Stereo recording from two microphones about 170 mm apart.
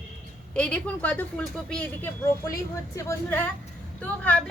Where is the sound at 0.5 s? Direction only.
10° left (ahead or behind).